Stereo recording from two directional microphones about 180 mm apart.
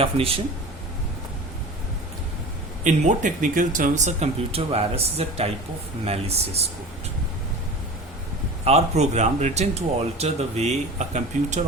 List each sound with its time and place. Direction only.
0.0 s speech: 30° right (ahead or behind)
2.8 s speech: 45° right (ahead or behind)
8.6 s speech: 35° right (ahead or behind)